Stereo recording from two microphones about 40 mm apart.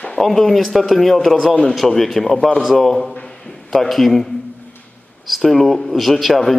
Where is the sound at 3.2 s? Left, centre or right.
Centre.